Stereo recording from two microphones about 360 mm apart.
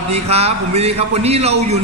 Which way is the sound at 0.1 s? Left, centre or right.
Centre.